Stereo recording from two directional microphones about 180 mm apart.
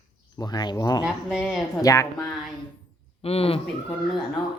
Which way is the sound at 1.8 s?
20° left (ahead or behind).